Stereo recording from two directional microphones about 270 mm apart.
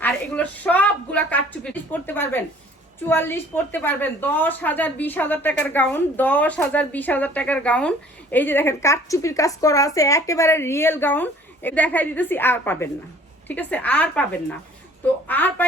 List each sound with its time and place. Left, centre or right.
0.0 s a woman's voice: centre
15.3 s a woman's voice: centre